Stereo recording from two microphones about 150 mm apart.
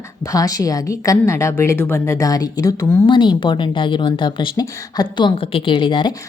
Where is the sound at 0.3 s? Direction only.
25° left (ahead or behind).